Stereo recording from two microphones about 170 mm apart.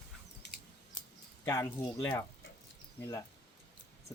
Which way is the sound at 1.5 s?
20° left (ahead or behind).